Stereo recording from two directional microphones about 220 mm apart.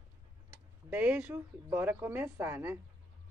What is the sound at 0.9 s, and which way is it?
A woman's voice, 5° right (ahead or behind).